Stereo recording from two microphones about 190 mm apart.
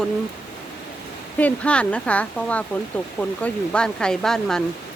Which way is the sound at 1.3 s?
5° left (ahead or behind).